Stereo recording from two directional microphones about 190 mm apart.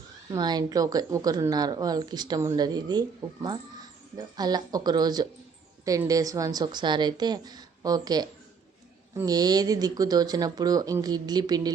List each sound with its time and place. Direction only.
0.3 s speech: 20° right (ahead or behind)